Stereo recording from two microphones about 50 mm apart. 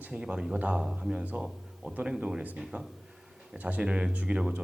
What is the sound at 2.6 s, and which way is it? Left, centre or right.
Speech, centre.